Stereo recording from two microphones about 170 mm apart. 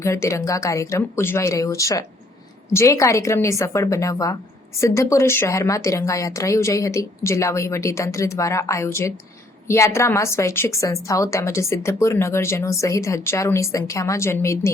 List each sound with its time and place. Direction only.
0.0 s a woman's voice: 15° left (ahead or behind)